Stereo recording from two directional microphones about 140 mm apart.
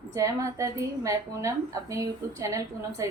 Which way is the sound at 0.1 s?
25° right (ahead or behind).